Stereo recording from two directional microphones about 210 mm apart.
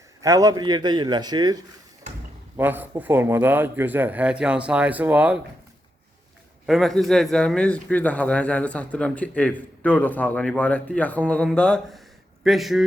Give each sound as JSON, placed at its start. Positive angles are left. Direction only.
{"t": 0.2, "sound": "a man's voice", "side_deg": -15}
{"t": 2.6, "sound": "a man's voice", "side_deg": -10}
{"t": 6.7, "sound": "speech", "side_deg": 0}